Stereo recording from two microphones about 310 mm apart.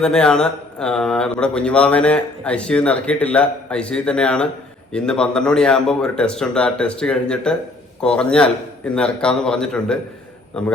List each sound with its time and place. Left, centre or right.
0.0 s speech: centre